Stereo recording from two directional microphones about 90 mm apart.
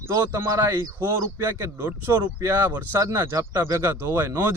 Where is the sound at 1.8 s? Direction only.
25° right (ahead or behind).